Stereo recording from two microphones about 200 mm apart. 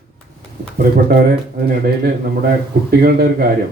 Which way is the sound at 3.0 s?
50° right (ahead or behind).